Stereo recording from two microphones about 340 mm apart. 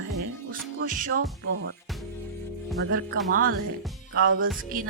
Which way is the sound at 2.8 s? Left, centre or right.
Right.